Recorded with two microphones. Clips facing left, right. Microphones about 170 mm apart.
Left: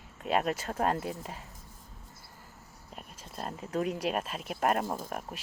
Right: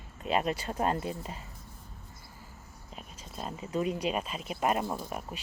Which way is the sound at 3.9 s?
5° left (ahead or behind).